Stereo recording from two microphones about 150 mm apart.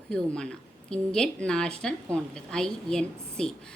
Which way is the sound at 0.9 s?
5° left (ahead or behind).